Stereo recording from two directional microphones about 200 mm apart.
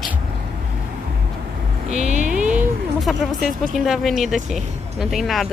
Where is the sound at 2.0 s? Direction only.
35° right (ahead or behind).